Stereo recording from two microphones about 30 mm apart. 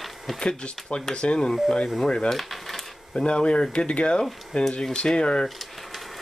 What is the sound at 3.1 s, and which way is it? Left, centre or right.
Speech, left.